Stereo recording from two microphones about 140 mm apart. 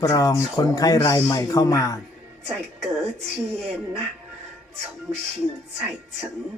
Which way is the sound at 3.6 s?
5° right (ahead or behind).